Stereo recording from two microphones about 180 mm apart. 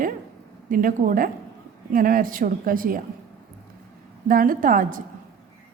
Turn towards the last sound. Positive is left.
turn(degrees=-50)  # may be behind; listen again after turning